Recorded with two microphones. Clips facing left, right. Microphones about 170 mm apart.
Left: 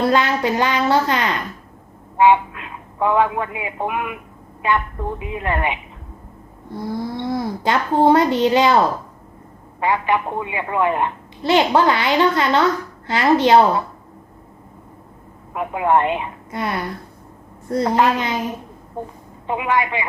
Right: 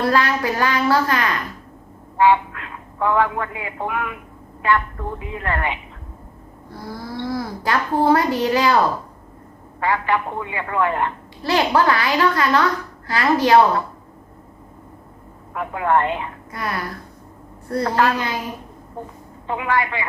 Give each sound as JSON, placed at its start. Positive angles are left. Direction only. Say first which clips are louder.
{"t": 0.0, "sound": "a woman's voice", "louder": "left 2 dB", "side_deg": 20}
{"t": 9.8, "sound": "a woman's voice", "louder": "left 2 dB", "side_deg": 20}
{"t": 15.5, "sound": "a woman's voice", "louder": "left 2 dB", "side_deg": 20}
{"t": 19.5, "sound": "a woman's voice", "louder": "left 2 dB", "side_deg": 20}